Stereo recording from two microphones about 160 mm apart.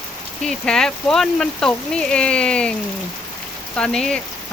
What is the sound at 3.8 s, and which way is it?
Speech, 5° left (ahead or behind).